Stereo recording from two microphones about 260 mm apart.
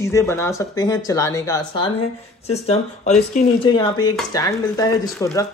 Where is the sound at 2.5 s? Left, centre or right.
Left.